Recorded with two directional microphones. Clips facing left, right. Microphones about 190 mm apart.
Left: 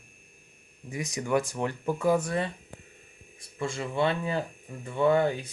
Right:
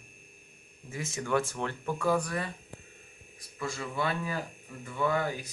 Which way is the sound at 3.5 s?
25° left (ahead or behind).